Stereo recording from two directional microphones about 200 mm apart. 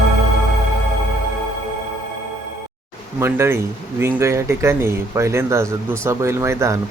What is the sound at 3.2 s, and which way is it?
Speech, 15° right (ahead or behind).